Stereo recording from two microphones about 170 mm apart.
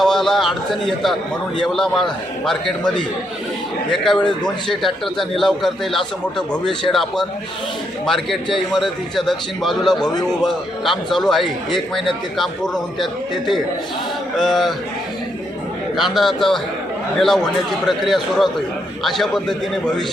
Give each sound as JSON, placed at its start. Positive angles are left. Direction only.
{"t": 0.0, "sound": "a sound", "side_deg": 0}
{"t": 1.6, "sound": "a man's voice", "side_deg": 0}
{"t": 3.9, "sound": "a man's voice", "side_deg": 0}
{"t": 16.0, "sound": "a man's voice", "side_deg": 0}